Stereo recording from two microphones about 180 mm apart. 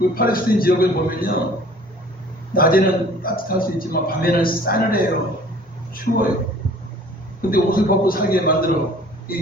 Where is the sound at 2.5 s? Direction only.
55° left (ahead or behind).